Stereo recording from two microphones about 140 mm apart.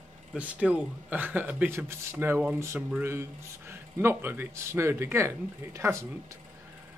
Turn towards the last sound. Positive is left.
turn(degrees=-20)  # may be behind; listen again after turning